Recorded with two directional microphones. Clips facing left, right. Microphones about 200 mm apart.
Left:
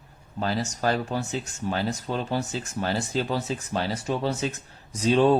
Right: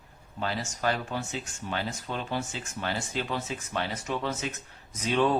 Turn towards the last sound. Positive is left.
turn(degrees=30)  # may be behind; listen again after turning